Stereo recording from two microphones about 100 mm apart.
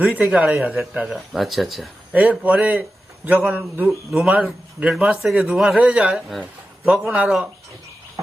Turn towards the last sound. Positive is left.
turn(degrees=-10)  # may be behind; listen again after turning